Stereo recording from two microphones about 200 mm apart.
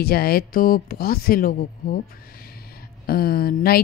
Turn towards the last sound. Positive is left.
turn(degrees=50)  # may be behind; listen again after turning